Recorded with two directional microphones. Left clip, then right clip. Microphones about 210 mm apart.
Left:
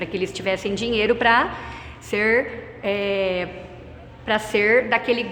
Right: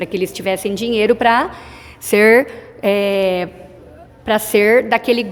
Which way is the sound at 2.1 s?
55° right (ahead or behind).